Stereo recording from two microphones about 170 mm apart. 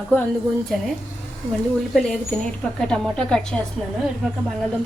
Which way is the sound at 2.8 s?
5° left (ahead or behind).